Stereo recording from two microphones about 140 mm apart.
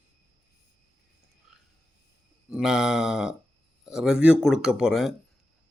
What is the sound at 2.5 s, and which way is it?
Speech, 5° right (ahead or behind).